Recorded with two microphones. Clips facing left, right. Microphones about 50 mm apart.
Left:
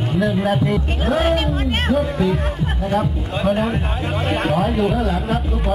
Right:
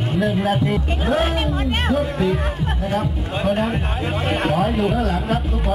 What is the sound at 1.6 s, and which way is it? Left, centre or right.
Music, centre.